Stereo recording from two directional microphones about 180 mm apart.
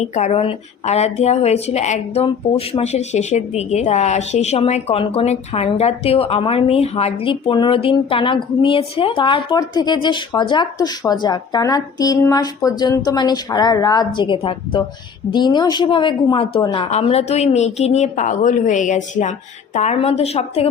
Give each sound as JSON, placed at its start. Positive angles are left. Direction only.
{"t": 0.0, "sound": "a woman's voice", "side_deg": 40}